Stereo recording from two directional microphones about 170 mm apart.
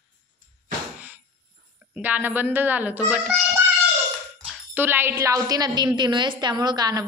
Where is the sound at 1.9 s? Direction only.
10° right (ahead or behind).